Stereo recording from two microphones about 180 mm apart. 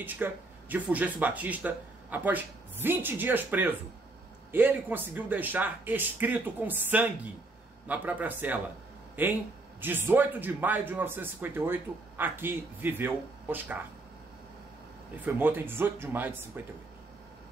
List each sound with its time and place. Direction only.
0.0 s a man's voice: 10° right (ahead or behind)
15.2 s a man's voice: 10° right (ahead or behind)